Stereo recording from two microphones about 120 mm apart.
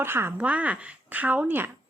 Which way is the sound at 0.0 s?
20° right (ahead or behind).